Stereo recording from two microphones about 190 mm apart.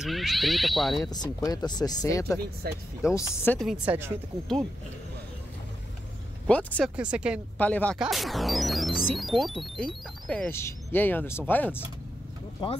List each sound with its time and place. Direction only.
0.0 s speech: centre (ahead or behind)
1.1 s speech: 20° left (ahead or behind)
3.4 s speech: centre (ahead or behind)
6.4 s speech: 5° left (ahead or behind)
7.0 s speech: 5° right (ahead or behind)
7.5 s speech: 10° left (ahead or behind)